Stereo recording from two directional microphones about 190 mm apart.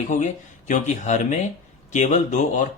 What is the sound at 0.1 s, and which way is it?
Speech, 40° left (ahead or behind).